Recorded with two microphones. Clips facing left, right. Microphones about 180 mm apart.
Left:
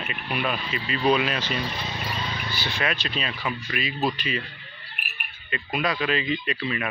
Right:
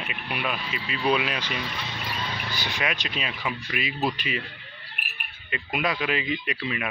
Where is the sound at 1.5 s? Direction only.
35° left (ahead or behind).